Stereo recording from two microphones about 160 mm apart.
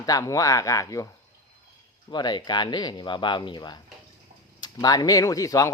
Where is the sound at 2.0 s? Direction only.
25° left (ahead or behind).